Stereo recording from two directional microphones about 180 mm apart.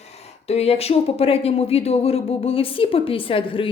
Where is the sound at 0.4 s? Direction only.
35° left (ahead or behind).